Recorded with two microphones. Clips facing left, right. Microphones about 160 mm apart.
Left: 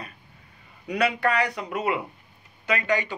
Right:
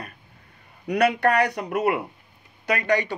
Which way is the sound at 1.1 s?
50° right (ahead or behind).